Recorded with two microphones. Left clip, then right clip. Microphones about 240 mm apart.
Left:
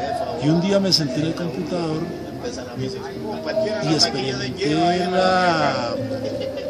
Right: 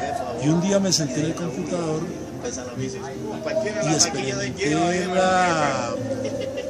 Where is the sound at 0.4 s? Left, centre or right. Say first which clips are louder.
Left 2 dB; centre.